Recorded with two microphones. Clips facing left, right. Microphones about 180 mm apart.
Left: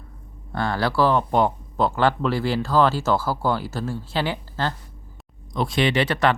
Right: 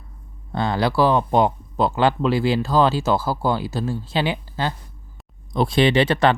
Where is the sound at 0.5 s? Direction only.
20° right (ahead or behind).